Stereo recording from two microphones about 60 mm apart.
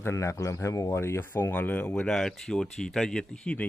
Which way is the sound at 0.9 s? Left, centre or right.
Left.